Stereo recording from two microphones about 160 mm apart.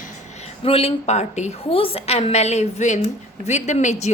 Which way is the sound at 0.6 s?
40° left (ahead or behind).